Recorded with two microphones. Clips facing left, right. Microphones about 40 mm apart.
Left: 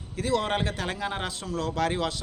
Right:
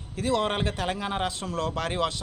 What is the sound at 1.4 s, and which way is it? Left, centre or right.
Speech, right.